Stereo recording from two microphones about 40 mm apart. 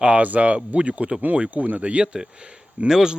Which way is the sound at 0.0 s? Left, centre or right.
Right.